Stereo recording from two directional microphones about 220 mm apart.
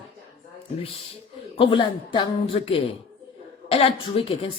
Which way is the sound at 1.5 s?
20° left (ahead or behind).